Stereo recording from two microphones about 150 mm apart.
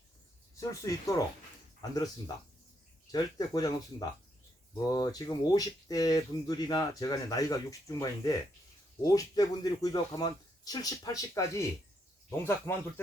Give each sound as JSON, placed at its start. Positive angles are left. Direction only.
{"t": 0.6, "sound": "speech", "side_deg": 20}
{"t": 4.9, "sound": "speech", "side_deg": 25}